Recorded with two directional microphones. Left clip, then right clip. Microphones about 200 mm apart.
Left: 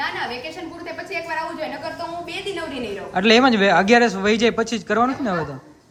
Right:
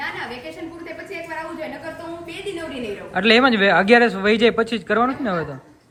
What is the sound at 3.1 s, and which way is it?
Speech, 15° left (ahead or behind).